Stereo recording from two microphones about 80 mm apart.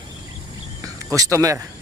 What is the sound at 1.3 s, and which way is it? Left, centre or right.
Speech, right.